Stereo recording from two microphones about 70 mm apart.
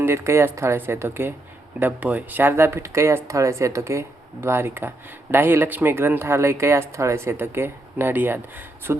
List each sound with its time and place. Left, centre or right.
0.0 s speech: right